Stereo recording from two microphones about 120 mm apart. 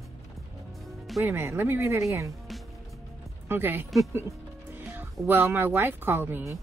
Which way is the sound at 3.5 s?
15° right (ahead or behind).